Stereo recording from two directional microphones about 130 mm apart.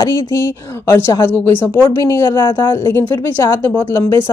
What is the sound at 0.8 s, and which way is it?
Speech, 20° left (ahead or behind).